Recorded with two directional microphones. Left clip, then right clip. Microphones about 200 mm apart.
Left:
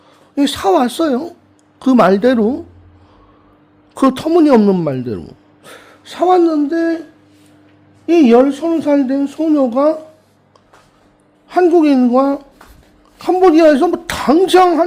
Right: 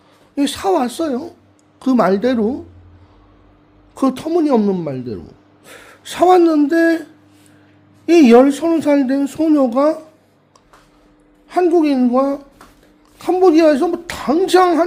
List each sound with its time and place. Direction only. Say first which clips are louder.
0.3 s a woman's voice: left 4 dB; 10° left (ahead or behind)
3.9 s a woman's voice: left 5 dB; 15° left (ahead or behind)
5.7 s speech: right 2 dB; centre (ahead or behind)
8.0 s speech: even; 5° right (ahead or behind)
11.4 s a woman's voice: left 3 dB; 10° left (ahead or behind)